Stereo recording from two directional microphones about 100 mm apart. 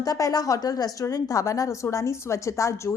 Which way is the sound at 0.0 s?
35° left (ahead or behind).